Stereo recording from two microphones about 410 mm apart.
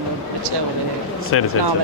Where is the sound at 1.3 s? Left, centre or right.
Left.